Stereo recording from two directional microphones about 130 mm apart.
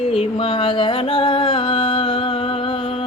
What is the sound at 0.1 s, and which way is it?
Music, 45° left (ahead or behind).